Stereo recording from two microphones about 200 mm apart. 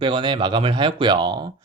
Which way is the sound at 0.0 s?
25° right (ahead or behind).